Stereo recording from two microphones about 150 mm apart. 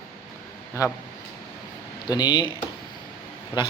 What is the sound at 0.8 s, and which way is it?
Speech, 20° left (ahead or behind).